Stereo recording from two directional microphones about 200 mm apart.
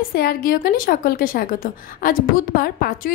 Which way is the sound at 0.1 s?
50° left (ahead or behind).